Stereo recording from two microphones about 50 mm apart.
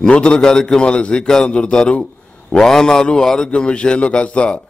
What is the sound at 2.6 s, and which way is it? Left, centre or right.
A man's voice, centre.